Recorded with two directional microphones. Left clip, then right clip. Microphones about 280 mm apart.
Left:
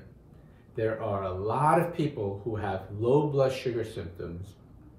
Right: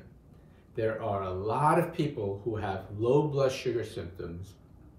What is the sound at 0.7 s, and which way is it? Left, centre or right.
Speech, centre.